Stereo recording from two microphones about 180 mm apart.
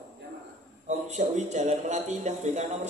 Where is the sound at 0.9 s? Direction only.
40° right (ahead or behind).